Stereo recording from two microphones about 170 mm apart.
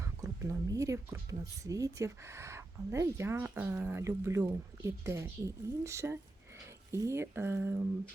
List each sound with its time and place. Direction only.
0.0 s speech: 20° right (ahead or behind)